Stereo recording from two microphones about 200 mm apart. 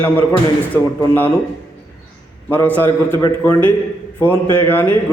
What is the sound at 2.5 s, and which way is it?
A man's voice, 10° left (ahead or behind).